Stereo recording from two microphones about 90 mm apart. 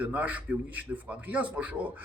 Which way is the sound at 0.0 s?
20° right (ahead or behind).